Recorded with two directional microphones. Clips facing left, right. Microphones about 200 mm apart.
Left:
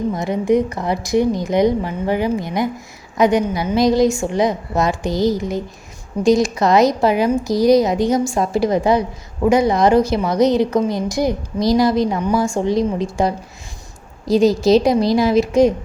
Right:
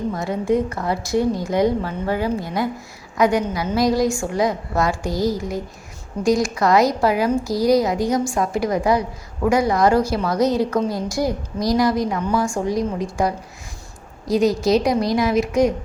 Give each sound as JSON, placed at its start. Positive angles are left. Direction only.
{"t": 0.1, "sound": "a woman's voice", "side_deg": 20}